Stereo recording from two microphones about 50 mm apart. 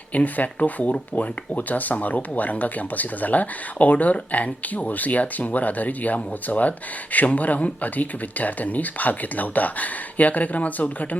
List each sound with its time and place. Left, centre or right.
0.1 s speech: left